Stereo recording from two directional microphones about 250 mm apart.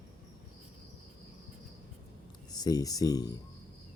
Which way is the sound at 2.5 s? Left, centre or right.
Centre.